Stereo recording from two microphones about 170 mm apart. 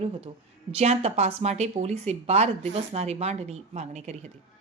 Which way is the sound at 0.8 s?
40° right (ahead or behind).